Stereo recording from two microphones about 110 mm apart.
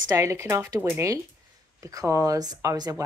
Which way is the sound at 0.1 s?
30° right (ahead or behind).